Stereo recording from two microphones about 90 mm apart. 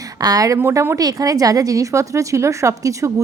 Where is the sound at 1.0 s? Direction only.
45° right (ahead or behind).